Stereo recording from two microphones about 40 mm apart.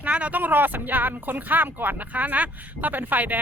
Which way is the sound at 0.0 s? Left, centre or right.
Right.